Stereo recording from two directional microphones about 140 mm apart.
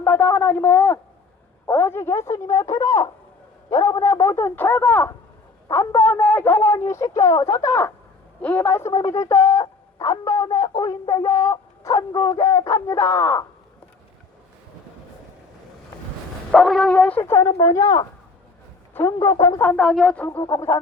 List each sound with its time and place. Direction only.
0.0 s a woman's voice: 15° left (ahead or behind)
16.5 s a woman's voice: 5° left (ahead or behind); by 19.6 s 25° left (ahead or behind)
19.6 s a woman's voice: 5° left (ahead or behind)
20.4 s speech: 25° left (ahead or behind)